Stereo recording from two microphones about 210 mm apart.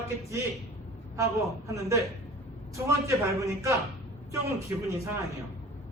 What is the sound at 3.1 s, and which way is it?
Speech, 15° right (ahead or behind).